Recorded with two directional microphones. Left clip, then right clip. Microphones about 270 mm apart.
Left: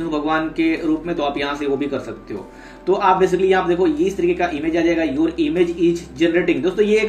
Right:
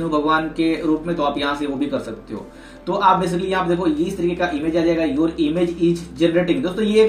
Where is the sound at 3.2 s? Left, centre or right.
Centre.